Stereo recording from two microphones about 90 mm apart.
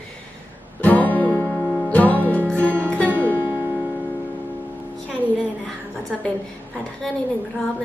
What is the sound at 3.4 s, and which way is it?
Music, 25° right (ahead or behind).